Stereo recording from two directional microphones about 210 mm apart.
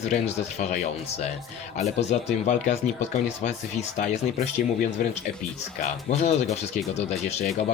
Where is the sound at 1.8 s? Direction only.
35° left (ahead or behind).